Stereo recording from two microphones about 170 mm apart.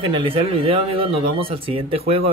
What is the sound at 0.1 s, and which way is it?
Speech, 30° right (ahead or behind).